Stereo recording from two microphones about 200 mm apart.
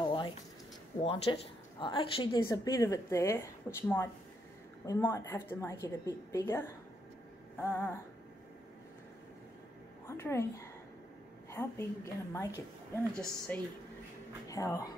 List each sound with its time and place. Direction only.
0.0 s a sound: 25° left (ahead or behind)
1.0 s a woman's voice: 25° left (ahead or behind)
4.8 s a woman's voice: 15° left (ahead or behind)
10.0 s a woman's voice: 15° left (ahead or behind)
11.5 s a woman's voice: 15° left (ahead or behind)